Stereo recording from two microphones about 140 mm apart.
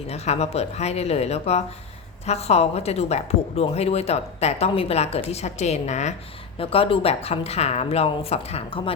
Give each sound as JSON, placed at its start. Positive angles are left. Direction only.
{"t": 0.1, "sound": "a woman's voice", "side_deg": 50}
{"t": 6.6, "sound": "a woman's voice", "side_deg": 40}